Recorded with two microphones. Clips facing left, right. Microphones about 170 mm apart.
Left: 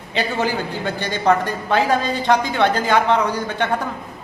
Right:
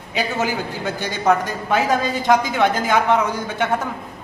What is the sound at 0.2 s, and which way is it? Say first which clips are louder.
A man's voice: left 1 dB; 10° right (ahead or behind).